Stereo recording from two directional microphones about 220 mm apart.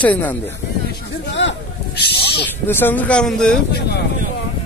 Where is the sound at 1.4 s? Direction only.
55° left (ahead or behind).